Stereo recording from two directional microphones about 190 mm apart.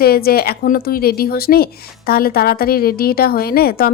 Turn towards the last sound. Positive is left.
turn(degrees=50)  # may be behind; listen again after turning